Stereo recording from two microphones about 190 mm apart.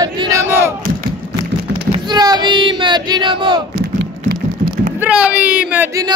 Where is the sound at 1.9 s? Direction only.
20° right (ahead or behind).